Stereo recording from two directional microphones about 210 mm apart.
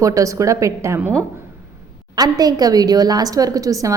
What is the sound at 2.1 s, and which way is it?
A woman's voice, 20° right (ahead or behind).